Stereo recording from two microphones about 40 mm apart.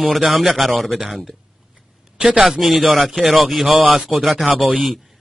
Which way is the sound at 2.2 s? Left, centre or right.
Right.